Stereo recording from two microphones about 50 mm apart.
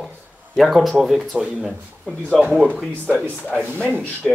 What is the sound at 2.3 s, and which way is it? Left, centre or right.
Speech, centre.